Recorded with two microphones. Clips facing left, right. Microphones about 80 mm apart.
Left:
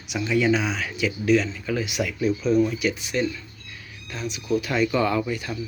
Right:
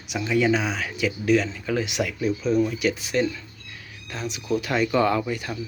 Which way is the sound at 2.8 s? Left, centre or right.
Right.